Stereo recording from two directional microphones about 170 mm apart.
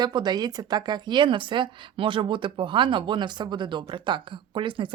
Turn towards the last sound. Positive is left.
turn(degrees=-30)  # may be behind; listen again after turning